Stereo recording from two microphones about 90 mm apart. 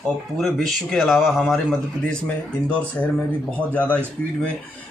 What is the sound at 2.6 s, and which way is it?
Speech, 15° left (ahead or behind).